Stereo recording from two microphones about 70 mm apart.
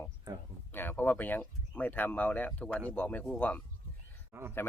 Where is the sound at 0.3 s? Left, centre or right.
Right.